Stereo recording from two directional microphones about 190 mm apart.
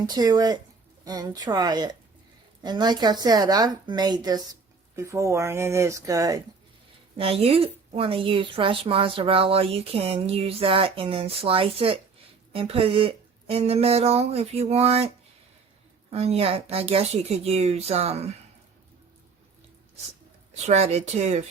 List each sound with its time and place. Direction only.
0.0 s a woman's voice: 20° right (ahead or behind)
7.2 s a woman's voice: 30° right (ahead or behind)
20.5 s speech: 35° right (ahead or behind)